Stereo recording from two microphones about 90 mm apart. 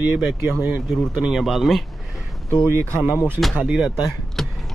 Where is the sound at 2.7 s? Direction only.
30° right (ahead or behind).